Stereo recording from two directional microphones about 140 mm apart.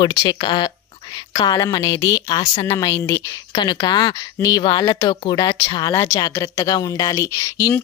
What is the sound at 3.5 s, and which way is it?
Speech, 35° left (ahead or behind).